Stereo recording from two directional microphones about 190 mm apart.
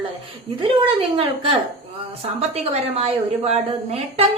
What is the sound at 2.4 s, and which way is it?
A woman's voice, 35° right (ahead or behind).